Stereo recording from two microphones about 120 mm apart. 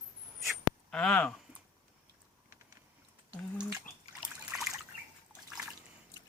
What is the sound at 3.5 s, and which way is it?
Speech, 10° right (ahead or behind).